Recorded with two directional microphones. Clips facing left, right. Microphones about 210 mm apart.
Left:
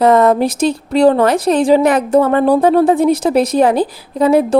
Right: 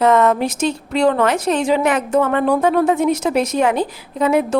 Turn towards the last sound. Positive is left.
turn(degrees=35)  # may be behind; listen again after turning